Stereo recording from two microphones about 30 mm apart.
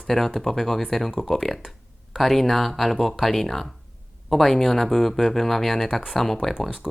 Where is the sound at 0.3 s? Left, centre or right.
Centre.